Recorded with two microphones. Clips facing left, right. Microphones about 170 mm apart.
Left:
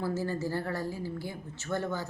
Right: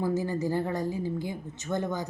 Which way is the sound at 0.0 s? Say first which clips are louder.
Right 4 dB; 15° right (ahead or behind).